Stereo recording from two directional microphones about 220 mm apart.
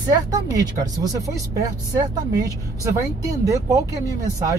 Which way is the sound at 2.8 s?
15° right (ahead or behind).